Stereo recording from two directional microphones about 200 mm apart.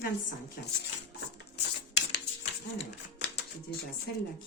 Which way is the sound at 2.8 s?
60° left (ahead or behind).